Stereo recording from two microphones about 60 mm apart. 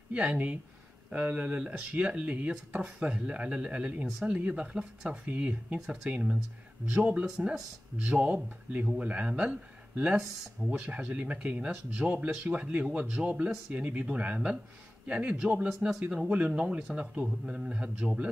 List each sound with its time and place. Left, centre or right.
0.1 s speech: right
10.6 s speech: centre
11.0 s a man's voice: right
16.3 s a man's voice: centre